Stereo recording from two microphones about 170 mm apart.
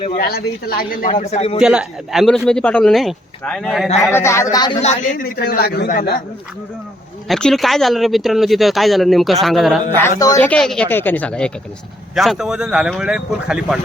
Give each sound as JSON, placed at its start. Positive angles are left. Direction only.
{"t": 0.2, "sound": "a man's voice", "side_deg": 65}
{"t": 1.6, "sound": "speech", "side_deg": -5}
{"t": 4.1, "sound": "a woman's voice", "side_deg": 15}
{"t": 4.8, "sound": "a man's voice", "side_deg": 45}
{"t": 7.3, "sound": "speech", "side_deg": 5}
{"t": 10.2, "sound": "a woman's voice", "side_deg": 20}